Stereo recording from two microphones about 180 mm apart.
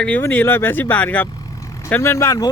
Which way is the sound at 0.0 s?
10° left (ahead or behind).